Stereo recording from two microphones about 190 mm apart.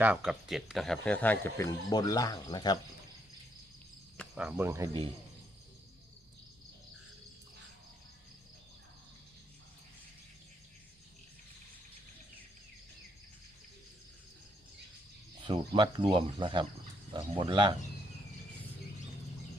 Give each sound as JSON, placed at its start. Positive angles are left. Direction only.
{"t": 0.0, "sound": "speech", "side_deg": -5}
{"t": 4.4, "sound": "speech", "side_deg": -10}
{"t": 15.4, "sound": "speech", "side_deg": -25}